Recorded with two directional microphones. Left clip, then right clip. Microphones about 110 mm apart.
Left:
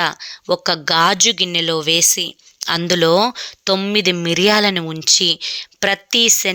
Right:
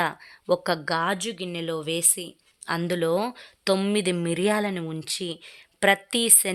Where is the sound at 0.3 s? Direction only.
10° left (ahead or behind).